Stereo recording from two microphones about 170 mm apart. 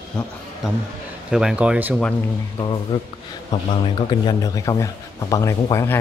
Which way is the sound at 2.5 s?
25° left (ahead or behind).